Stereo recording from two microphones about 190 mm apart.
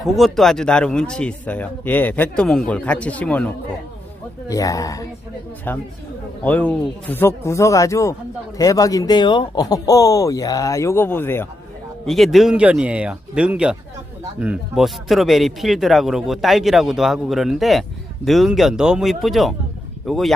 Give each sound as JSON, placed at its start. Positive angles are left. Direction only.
{"t": 0.0, "sound": "speech", "side_deg": 0}
{"t": 4.4, "sound": "speech", "side_deg": 15}
{"t": 12.0, "sound": "speech", "side_deg": 0}